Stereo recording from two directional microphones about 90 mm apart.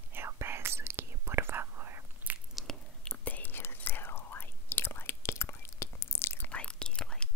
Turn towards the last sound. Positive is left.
turn(degrees=10)  # may be behind; listen again after turning